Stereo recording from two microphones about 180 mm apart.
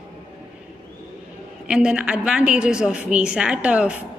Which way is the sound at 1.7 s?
5° right (ahead or behind).